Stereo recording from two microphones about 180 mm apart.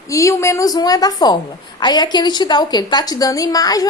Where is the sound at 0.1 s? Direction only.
15° left (ahead or behind).